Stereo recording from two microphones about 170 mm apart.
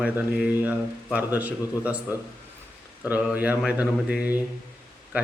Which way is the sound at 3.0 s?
10° right (ahead or behind).